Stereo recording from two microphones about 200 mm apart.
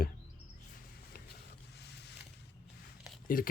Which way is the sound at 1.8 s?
55° left (ahead or behind).